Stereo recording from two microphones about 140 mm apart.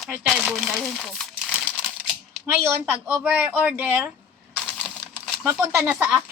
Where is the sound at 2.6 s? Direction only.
20° right (ahead or behind).